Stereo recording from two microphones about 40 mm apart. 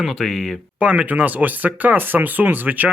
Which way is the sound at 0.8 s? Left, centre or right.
Right.